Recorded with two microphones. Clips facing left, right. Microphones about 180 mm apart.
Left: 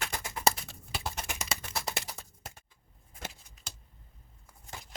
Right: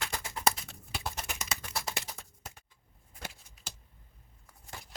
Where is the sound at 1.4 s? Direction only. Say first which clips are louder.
Left 1 dB; 30° left (ahead or behind).